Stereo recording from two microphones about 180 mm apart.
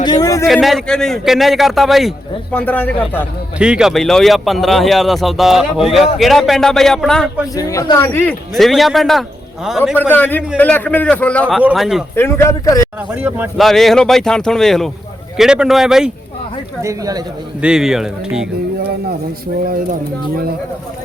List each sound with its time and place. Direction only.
0.0 s a sound: 20° left (ahead or behind)
0.4 s a man's voice: centre (ahead or behind)
3.6 s a man's voice: 5° right (ahead or behind)
7.5 s a man's voice: 20° left (ahead or behind); by 9.9 s centre (ahead or behind)
9.9 s a man's voice: 10° left (ahead or behind)
12.1 s a man's voice: 15° left (ahead or behind)
13.1 s speech: 10° right (ahead or behind)
13.6 s a man's voice: centre (ahead or behind)
16.8 s speech: 20° right (ahead or behind)
17.6 s a man's voice: 5° right (ahead or behind)